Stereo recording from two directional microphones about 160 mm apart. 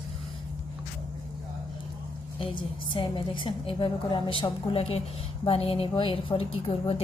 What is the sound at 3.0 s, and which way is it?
Speech, 30° left (ahead or behind).